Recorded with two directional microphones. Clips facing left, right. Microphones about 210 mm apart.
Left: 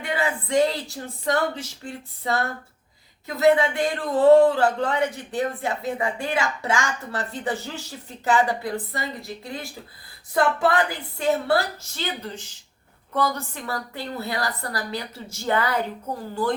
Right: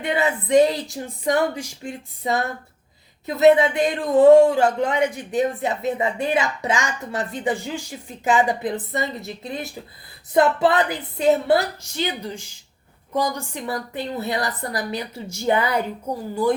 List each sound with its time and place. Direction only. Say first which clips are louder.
0.0 s a woman's voice: right 4 dB; 20° right (ahead or behind)